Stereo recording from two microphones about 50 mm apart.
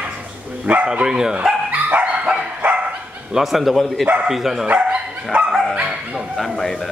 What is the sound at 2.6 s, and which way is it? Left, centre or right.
Dog, right.